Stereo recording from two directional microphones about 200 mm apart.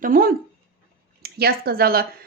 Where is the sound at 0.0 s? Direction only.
45° right (ahead or behind).